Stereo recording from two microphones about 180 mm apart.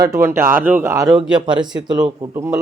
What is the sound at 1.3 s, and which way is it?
Speech, 25° right (ahead or behind).